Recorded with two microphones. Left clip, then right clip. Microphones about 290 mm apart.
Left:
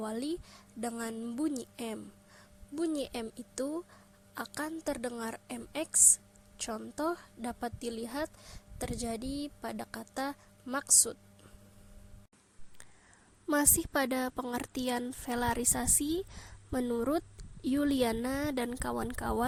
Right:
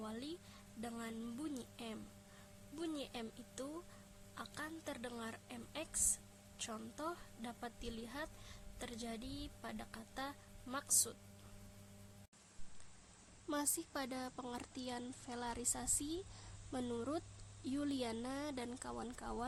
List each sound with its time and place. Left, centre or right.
0.0 s a sound: left
0.8 s speech: left
13.5 s speech: left